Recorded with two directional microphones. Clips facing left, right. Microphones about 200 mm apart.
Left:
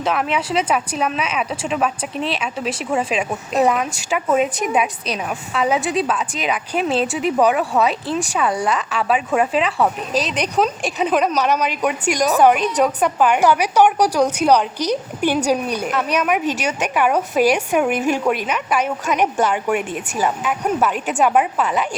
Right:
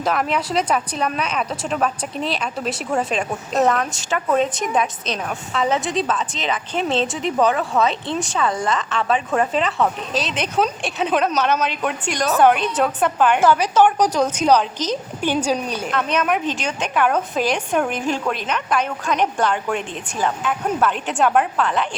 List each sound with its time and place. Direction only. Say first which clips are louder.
0.0 s a woman's voice: left 1 dB; 5° left (ahead or behind)
12.4 s a woman's voice: even; 5° left (ahead or behind)